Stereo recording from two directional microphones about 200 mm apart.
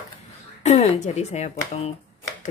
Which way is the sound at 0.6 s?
30° left (ahead or behind).